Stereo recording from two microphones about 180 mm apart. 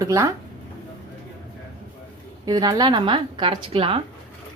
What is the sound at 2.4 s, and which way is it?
A woman's voice, 20° right (ahead or behind).